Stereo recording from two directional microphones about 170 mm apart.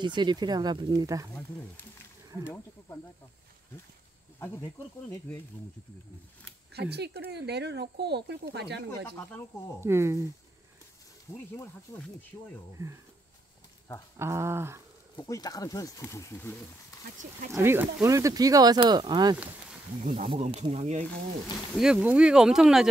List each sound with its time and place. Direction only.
0.0 s speech: 25° right (ahead or behind)
2.0 s speech: 15° left (ahead or behind)
6.7 s speech: 75° right (ahead or behind)
9.1 s speech: 10° left (ahead or behind)
9.8 s speech: 15° right (ahead or behind)
11.3 s speech: 15° left (ahead or behind)
12.8 s speech: 15° right (ahead or behind)
14.1 s speech: 15° right (ahead or behind)
15.1 s speech: 20° left (ahead or behind)
16.9 s a sound: 20° left (ahead or behind)
17.5 s speech: 15° right (ahead or behind)
20.2 s speech: 40° right (ahead or behind)
21.7 s speech: 5° right (ahead or behind)